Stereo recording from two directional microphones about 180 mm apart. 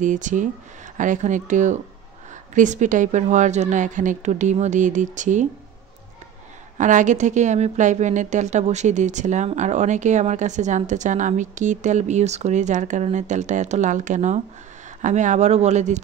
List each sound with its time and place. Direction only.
0.0 s a woman's voice: 45° right (ahead or behind)
6.8 s a woman's voice: 45° right (ahead or behind)